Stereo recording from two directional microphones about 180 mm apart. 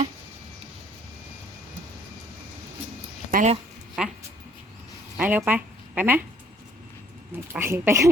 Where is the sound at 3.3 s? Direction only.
50° right (ahead or behind).